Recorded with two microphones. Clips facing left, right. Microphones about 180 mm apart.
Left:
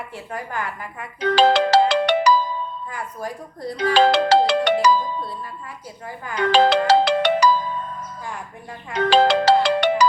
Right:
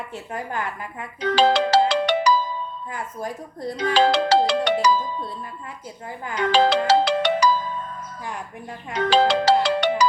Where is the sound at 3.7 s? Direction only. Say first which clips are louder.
Left 2 dB; 60° left (ahead or behind).